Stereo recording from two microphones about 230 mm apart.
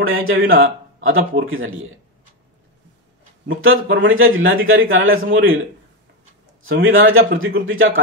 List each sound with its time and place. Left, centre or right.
0.0 s a man's voice: right
3.4 s a man's voice: right
5.1 s a man's voice: right
6.6 s a man's voice: right